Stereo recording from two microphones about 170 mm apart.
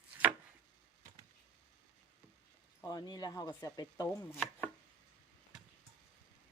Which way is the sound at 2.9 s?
25° left (ahead or behind).